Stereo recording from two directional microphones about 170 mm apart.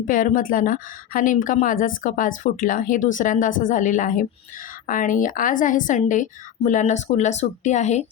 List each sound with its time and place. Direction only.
0.0 s a woman's voice: 50° left (ahead or behind)